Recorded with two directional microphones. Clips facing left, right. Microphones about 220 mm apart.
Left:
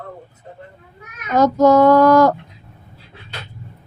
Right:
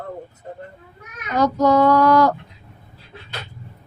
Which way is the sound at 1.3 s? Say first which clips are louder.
Left 4 dB; 45° left (ahead or behind).